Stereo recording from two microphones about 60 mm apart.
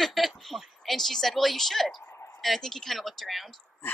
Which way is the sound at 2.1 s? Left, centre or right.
Left.